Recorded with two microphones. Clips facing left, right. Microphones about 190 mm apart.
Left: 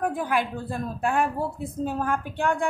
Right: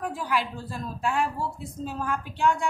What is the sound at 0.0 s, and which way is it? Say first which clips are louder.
A woman's voice: left 3 dB; 50° left (ahead or behind).